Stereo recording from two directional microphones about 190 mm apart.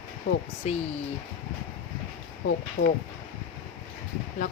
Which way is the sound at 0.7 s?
35° left (ahead or behind).